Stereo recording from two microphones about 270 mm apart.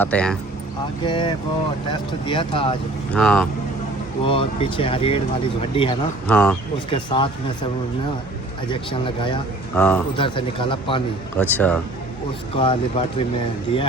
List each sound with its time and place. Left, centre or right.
0.0 s speech: centre
1.0 s speech: centre
3.1 s speech: centre
4.2 s speech: centre
6.2 s speech: centre
6.9 s speech: centre
8.7 s speech: centre
9.7 s speech: centre
10.2 s speech: centre
11.3 s speech: centre
12.5 s speech: centre